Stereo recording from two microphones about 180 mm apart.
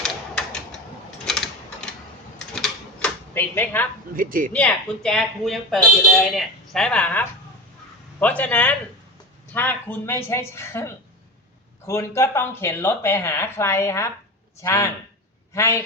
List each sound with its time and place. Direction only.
0.0 s typewriter: 5° left (ahead or behind)
4.1 s a woman's voice: 50° right (ahead or behind)
4.5 s speech: 5° left (ahead or behind)